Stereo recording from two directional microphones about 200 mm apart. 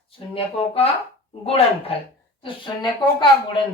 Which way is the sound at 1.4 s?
30° left (ahead or behind).